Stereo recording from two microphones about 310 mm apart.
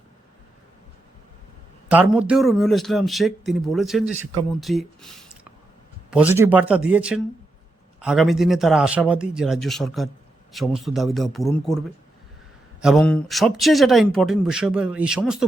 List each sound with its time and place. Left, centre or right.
1.9 s speech: centre
12.8 s speech: centre